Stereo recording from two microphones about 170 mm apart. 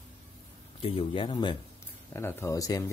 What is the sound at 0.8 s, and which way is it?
Speech, 30° left (ahead or behind).